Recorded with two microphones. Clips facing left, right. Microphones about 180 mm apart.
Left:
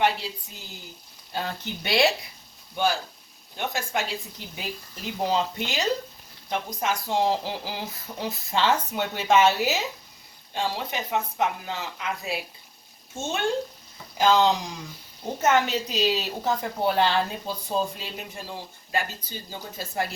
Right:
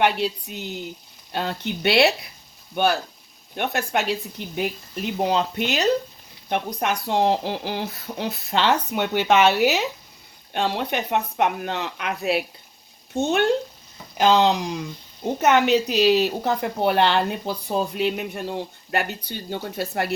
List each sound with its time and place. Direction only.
0.0 s speech: 65° right (ahead or behind)